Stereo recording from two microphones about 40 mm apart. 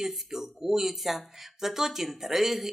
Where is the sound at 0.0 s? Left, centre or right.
Centre.